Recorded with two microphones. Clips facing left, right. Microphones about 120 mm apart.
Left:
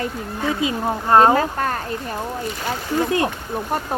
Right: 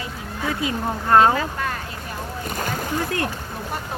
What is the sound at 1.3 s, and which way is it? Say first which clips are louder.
Speech: left 5 dB; 40° left (ahead or behind).